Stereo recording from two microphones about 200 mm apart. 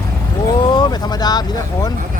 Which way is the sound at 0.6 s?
25° left (ahead or behind).